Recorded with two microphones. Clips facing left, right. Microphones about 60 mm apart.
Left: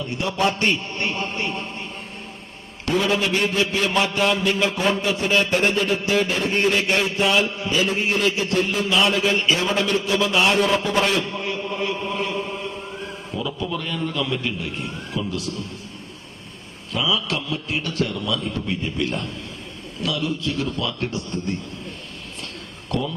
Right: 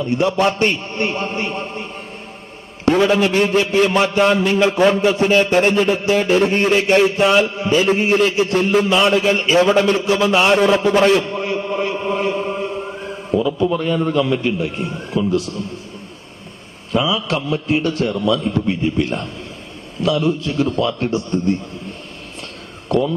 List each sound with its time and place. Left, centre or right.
0.2 s a man's voice: right
2.8 s a man's voice: right
10.5 s a man's voice: right
11.0 s a man's voice: right
11.5 s chant: right
13.4 s a man's voice: right
16.9 s a man's voice: right